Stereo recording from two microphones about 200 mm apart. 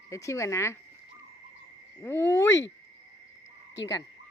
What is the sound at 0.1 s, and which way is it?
Speech, 15° left (ahead or behind).